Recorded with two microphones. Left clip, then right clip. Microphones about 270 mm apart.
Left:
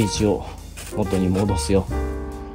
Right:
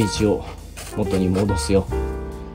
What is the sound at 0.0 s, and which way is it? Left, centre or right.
Speech, centre.